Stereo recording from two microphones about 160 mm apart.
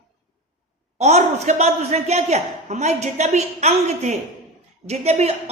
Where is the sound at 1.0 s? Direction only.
45° right (ahead or behind).